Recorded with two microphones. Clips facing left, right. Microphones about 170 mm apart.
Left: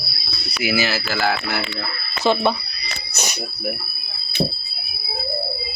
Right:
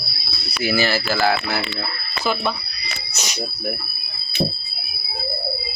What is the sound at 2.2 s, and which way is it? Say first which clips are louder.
Speech: left 5 dB; 30° left (ahead or behind).